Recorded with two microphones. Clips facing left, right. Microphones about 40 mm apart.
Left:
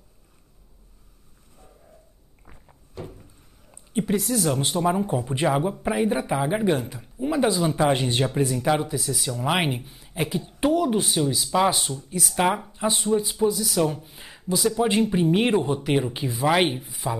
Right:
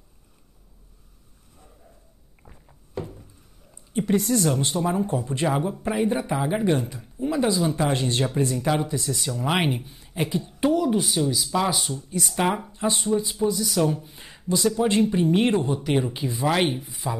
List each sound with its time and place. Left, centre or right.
3.0 s a sound: right
3.9 s speech: centre
4.6 s speech: centre
8.3 s speech: centre
12.1 s speech: centre